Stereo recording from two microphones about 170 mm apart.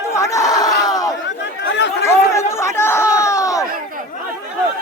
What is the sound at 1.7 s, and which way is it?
Chatter, 90° left.